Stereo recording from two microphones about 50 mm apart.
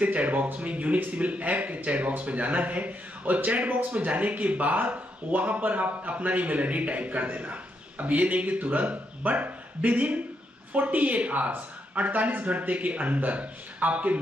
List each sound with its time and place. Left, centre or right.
0.0 s a man's voice: right